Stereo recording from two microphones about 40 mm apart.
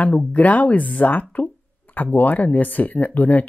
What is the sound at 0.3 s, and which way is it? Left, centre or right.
Speech, left.